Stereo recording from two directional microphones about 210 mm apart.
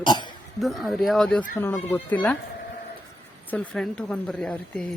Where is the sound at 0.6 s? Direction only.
Centre (ahead or behind).